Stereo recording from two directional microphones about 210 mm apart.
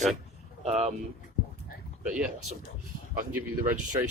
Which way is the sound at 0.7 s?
30° right (ahead or behind).